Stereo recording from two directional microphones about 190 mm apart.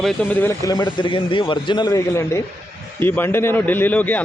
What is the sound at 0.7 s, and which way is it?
A man's voice, 25° left (ahead or behind).